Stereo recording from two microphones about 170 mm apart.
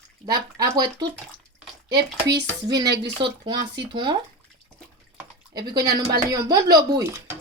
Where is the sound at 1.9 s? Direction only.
80° right.